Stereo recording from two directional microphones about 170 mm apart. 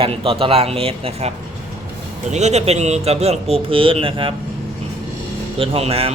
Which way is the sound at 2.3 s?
40° right (ahead or behind).